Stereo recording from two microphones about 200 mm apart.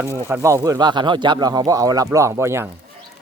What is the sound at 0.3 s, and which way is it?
Speech, 15° right (ahead or behind).